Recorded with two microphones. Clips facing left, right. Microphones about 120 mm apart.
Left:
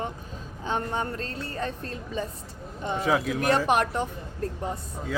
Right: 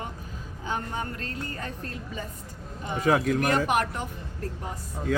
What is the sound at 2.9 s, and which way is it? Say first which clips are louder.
Speech: right 2 dB; centre (ahead or behind).